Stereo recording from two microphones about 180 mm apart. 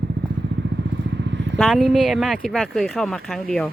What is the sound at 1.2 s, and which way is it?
Vehicle, 80° right.